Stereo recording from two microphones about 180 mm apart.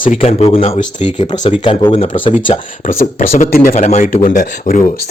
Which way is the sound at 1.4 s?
30° left (ahead or behind).